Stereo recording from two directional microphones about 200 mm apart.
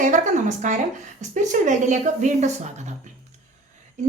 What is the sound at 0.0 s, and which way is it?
A woman's voice, 40° right (ahead or behind).